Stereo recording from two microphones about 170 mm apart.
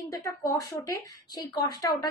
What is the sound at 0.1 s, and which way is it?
Speech, 20° left (ahead or behind).